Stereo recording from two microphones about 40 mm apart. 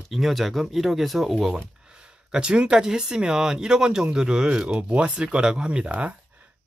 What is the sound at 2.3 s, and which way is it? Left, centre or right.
Speech, right.